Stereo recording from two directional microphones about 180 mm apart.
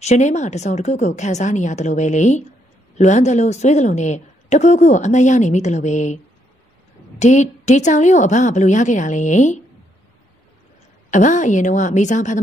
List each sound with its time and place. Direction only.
0.0 s a woman's voice: 40° left (ahead or behind)
11.1 s a woman's voice: 45° left (ahead or behind)